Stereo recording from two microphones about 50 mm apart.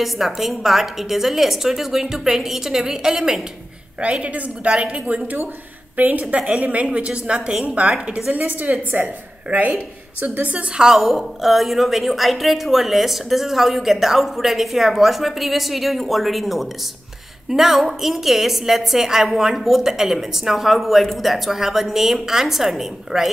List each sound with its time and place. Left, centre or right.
0.0 s a woman's voice: centre
4.0 s a woman's voice: right
8.3 s a woman's voice: right
10.8 s a woman's voice: centre